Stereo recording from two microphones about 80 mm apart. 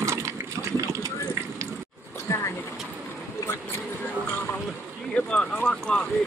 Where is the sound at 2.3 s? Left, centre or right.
Left.